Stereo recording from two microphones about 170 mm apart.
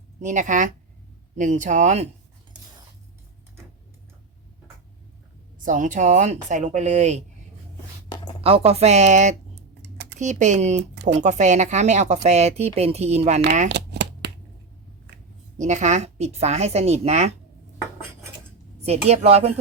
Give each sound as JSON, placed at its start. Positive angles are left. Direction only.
{"t": 0.2, "sound": "a woman's voice", "side_deg": -45}
{"t": 5.5, "sound": "a woman's voice", "side_deg": -50}
{"t": 8.4, "sound": "a woman's voice", "side_deg": -35}
{"t": 13.7, "sound": "shuffling cards", "side_deg": -80}
{"t": 15.5, "sound": "speech", "side_deg": -45}
{"t": 18.8, "sound": "speech", "side_deg": -40}